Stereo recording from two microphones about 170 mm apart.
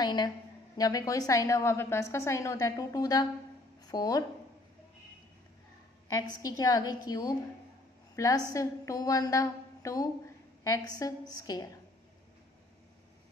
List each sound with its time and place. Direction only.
0.0 s a woman's voice: 25° left (ahead or behind)
6.0 s a woman's voice: 20° left (ahead or behind)